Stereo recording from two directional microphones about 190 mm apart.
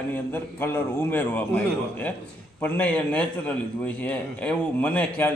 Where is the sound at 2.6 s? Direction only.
10° left (ahead or behind).